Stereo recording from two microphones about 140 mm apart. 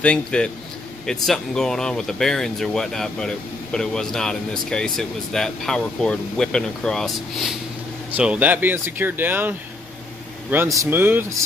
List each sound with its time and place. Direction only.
0.0 s a man's voice: 10° left (ahead or behind); by 11.4 s 15° right (ahead or behind)